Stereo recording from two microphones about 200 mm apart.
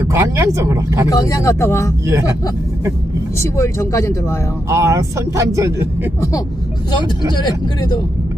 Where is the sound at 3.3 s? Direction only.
15° left (ahead or behind).